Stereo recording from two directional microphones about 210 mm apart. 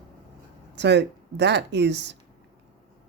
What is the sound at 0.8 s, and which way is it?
Speech, 55° right (ahead or behind).